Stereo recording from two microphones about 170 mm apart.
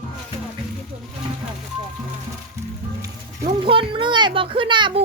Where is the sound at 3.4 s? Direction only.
30° right (ahead or behind).